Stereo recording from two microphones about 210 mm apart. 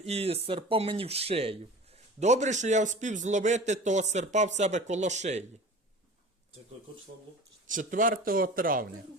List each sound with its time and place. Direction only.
0.0 s speech: 30° right (ahead or behind)
7.7 s speech: 40° right (ahead or behind)